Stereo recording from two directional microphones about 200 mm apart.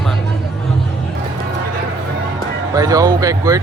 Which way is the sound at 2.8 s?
20° right (ahead or behind).